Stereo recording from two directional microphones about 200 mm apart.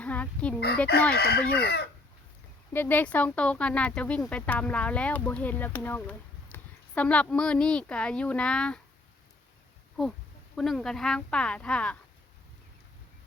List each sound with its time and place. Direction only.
0.0 s speech: 5° left (ahead or behind)
1.1 s chicken: 55° left (ahead or behind)
2.7 s speech: 10° left (ahead or behind)
10.0 s speech: centre (ahead or behind)